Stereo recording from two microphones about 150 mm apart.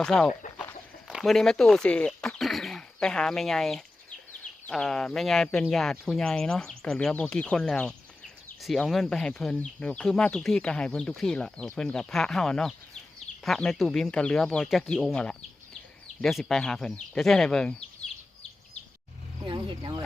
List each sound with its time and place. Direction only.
0.0 s speech: 5° left (ahead or behind)
19.5 s speech: 30° right (ahead or behind)